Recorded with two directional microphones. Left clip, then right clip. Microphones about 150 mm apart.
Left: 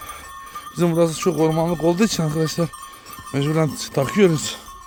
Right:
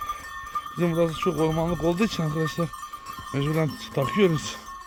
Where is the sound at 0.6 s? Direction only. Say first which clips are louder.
Left 5 dB; 45° left (ahead or behind).